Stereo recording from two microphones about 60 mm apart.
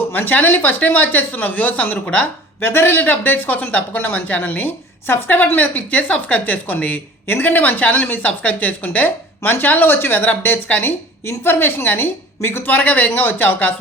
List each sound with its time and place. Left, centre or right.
0.1 s speech: left
2.6 s speech: left